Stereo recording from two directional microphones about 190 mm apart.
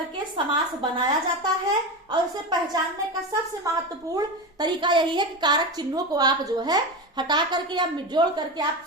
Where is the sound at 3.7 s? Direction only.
15° right (ahead or behind).